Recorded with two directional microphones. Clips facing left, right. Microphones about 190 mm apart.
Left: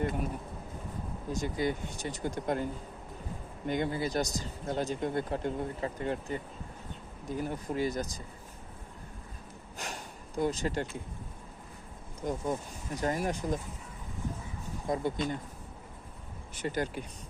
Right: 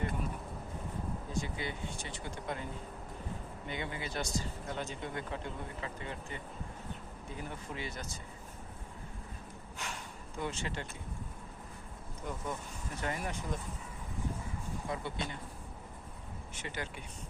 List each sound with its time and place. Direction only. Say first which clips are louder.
1.3 s speech: left 10 dB; 40° left (ahead or behind)
3.7 s speech: left 9 dB; 40° left (ahead or behind)
9.7 s a sound: left 3 dB; 40° left (ahead or behind)
12.2 s speech: left 7 dB; 35° left (ahead or behind)
14.8 s speech: left 9 dB; 45° left (ahead or behind)
16.6 s speech: left 10 dB; 40° left (ahead or behind)